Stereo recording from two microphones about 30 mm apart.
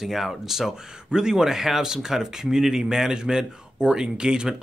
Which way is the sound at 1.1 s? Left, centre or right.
Right.